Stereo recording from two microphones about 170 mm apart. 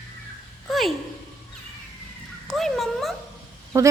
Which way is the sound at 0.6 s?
Centre (ahead or behind).